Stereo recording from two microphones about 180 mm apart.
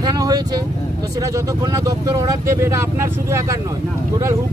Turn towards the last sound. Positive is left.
turn(degrees=-15)  # may be behind; listen again after turning